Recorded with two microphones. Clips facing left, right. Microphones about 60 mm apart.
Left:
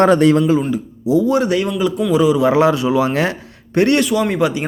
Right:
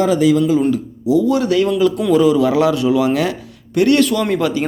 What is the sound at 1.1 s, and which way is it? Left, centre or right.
Speech, left.